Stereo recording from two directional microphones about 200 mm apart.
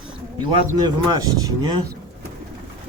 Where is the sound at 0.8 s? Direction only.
20° right (ahead or behind).